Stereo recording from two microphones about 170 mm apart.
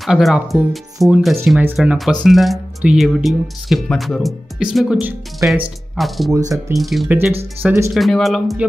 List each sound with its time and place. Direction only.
0.0 s speech: centre (ahead or behind)
7.6 s speech: 15° right (ahead or behind)
7.9 s speech: centre (ahead or behind)